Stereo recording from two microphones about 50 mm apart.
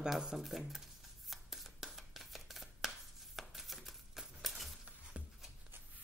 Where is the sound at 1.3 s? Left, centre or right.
Centre.